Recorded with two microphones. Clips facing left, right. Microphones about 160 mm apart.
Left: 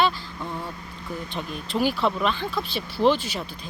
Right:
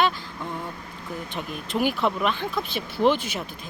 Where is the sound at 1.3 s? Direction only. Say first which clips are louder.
Even; 15° right (ahead or behind).